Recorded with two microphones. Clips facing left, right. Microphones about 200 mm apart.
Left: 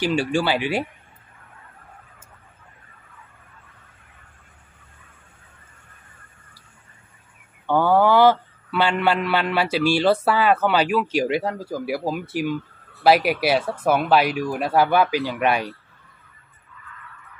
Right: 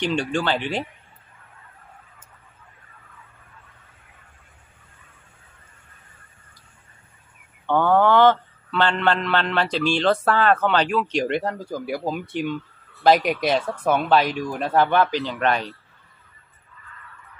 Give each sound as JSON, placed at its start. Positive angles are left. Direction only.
{"t": 0.0, "sound": "a man's voice", "side_deg": 5}
{"t": 7.6, "sound": "a man's voice", "side_deg": 10}
{"t": 16.8, "sound": "honk", "side_deg": -35}